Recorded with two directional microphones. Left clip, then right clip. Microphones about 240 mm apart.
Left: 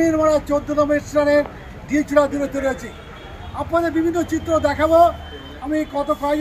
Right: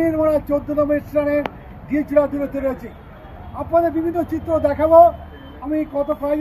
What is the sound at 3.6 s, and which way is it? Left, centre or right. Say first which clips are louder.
Speech: right 2 dB; centre.